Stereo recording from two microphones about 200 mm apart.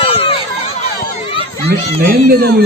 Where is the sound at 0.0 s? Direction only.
25° left (ahead or behind).